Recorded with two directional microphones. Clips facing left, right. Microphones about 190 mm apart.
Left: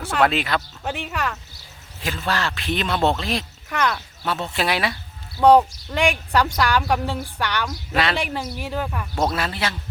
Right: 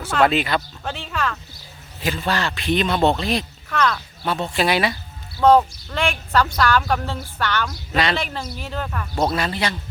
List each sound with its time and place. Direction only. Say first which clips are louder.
0.0 s a man's voice: right 2 dB; centre (ahead or behind)
0.9 s a woman's voice: left 1 dB; 15° left (ahead or behind)
2.0 s a man's voice: right 2 dB; centre (ahead or behind)
3.7 s a woman's voice: right 2 dB; 15° left (ahead or behind)
4.5 s a man's voice: right 4 dB; centre (ahead or behind)
5.4 s a woman's voice: left 1 dB; 15° left (ahead or behind)